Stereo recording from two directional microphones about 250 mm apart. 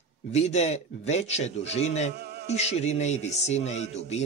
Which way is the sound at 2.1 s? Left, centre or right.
Right.